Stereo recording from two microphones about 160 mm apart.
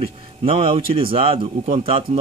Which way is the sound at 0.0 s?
35° right (ahead or behind).